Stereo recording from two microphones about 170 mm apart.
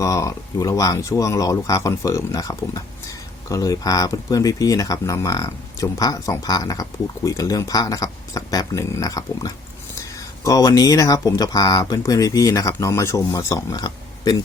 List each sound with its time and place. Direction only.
0.0 s speech: 20° left (ahead or behind)